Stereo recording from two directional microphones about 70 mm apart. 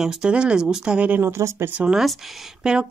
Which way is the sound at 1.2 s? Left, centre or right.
Right.